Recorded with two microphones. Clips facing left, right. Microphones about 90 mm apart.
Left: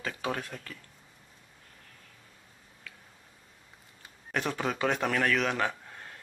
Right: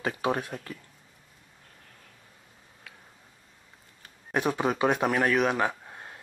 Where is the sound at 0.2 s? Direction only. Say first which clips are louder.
Right 5 dB; 20° right (ahead or behind).